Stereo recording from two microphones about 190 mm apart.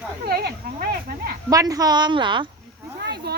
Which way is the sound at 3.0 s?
60° right (ahead or behind).